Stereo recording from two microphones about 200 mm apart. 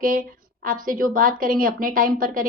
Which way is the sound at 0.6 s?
45° right (ahead or behind).